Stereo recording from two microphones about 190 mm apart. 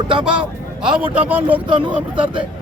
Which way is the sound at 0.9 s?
5° right (ahead or behind).